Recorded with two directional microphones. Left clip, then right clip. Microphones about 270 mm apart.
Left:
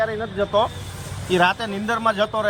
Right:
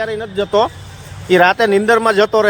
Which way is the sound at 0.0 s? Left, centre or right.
Right.